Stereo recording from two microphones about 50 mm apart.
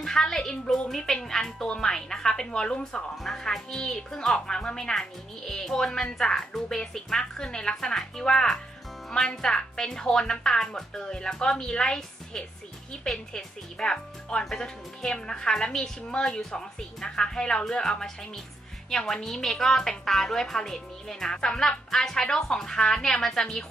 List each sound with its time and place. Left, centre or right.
0.0 s a woman's voice: centre